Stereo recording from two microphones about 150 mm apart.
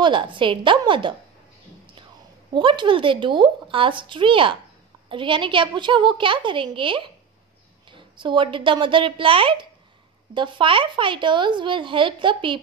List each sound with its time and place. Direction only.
0.0 s a woman's voice: 35° right (ahead or behind)
2.5 s a woman's voice: 30° right (ahead or behind)